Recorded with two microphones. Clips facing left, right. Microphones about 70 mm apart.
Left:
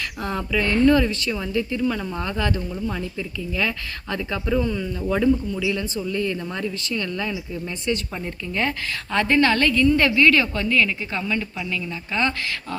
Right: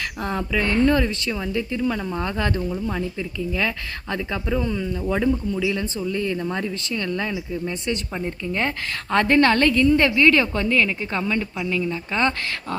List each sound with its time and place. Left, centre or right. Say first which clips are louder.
0.2 s speech: even; right
2.4 s a woman's voice: even; right
2.8 s speech: right 1 dB; right
4.7 s speech: even; centre
5.7 s a woman's voice: even; right
9.8 s a woman's voice: left 1 dB; right